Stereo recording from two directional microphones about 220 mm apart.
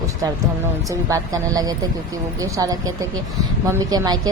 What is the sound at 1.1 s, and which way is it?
A woman's voice, 15° right (ahead or behind).